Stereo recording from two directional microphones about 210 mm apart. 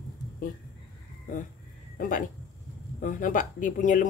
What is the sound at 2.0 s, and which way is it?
Dog, 40° left (ahead or behind).